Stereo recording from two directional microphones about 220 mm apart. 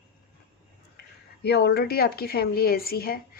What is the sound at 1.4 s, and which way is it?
Speech, 45° left (ahead or behind).